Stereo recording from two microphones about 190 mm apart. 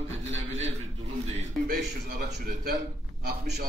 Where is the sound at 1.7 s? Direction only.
55° right (ahead or behind).